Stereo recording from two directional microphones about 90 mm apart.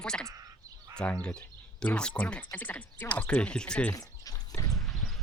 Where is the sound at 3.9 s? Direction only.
40° left (ahead or behind).